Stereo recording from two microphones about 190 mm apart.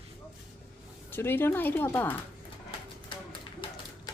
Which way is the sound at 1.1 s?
10° left (ahead or behind).